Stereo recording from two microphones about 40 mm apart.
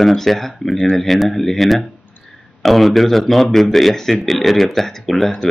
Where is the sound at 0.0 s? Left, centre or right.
Centre.